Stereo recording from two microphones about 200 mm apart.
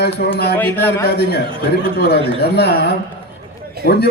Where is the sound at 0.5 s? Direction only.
10° left (ahead or behind).